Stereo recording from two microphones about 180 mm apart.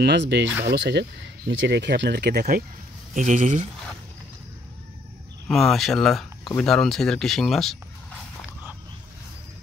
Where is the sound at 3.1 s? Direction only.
45° right (ahead or behind).